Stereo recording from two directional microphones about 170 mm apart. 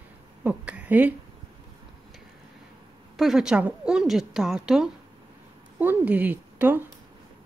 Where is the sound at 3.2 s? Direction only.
Centre (ahead or behind).